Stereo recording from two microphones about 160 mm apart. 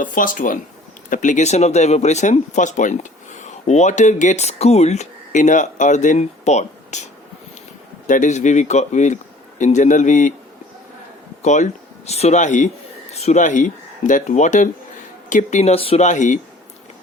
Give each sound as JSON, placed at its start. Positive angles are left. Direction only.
{"t": 0.0, "sound": "speech", "side_deg": 55}
{"t": 8.0, "sound": "speech", "side_deg": 55}
{"t": 11.4, "sound": "speech", "side_deg": 45}